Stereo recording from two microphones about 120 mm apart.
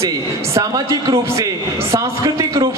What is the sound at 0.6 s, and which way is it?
A man's voice, 25° right (ahead or behind).